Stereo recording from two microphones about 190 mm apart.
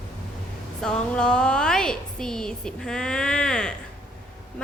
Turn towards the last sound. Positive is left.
turn(degrees=5)  # may be behind; listen again after turning